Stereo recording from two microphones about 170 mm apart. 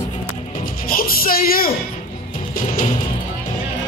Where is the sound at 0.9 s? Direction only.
60° left (ahead or behind).